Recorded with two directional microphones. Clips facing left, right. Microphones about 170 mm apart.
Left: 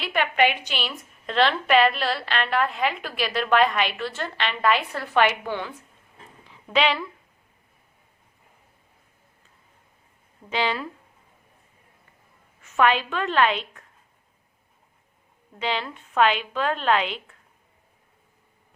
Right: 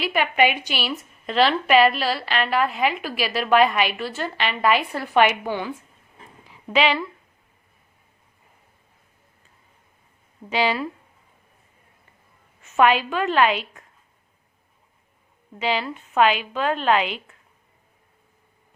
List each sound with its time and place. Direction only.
0.0 s a woman's voice: 10° right (ahead or behind)
6.7 s a woman's voice: centre (ahead or behind)
10.5 s a woman's voice: 10° right (ahead or behind)
12.6 s a sound: 25° right (ahead or behind)
12.9 s a woman's voice: 10° right (ahead or behind)
15.5 s a woman's voice: 5° right (ahead or behind)